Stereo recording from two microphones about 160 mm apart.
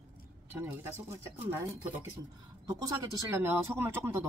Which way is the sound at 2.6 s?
20° right (ahead or behind).